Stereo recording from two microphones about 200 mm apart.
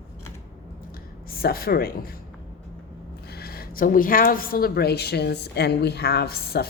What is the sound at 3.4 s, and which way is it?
Speech, 50° left (ahead or behind).